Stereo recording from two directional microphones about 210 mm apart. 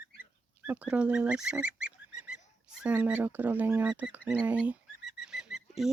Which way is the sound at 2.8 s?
5° right (ahead or behind).